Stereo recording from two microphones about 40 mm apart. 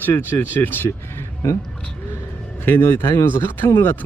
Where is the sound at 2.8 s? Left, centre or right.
Left.